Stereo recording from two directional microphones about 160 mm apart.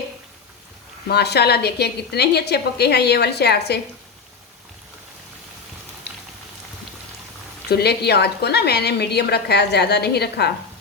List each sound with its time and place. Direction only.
1.0 s a woman's voice: 90° left
7.7 s a woman's voice: 90° left